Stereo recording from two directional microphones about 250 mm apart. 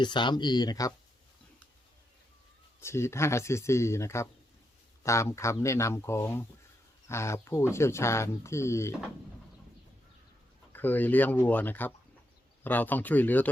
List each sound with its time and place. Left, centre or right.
0.0 s speech: centre
2.8 s speech: centre
10.7 s speech: centre